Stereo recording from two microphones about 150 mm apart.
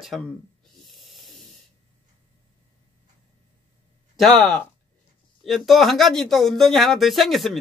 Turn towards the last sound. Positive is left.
turn(degrees=0)  # may be behind; listen again after turning